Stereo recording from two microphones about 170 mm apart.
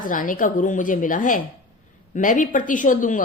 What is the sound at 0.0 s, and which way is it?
Speech, 50° left (ahead or behind).